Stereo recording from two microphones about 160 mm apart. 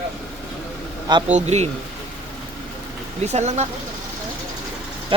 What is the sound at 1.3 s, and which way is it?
Speech, 45° right (ahead or behind).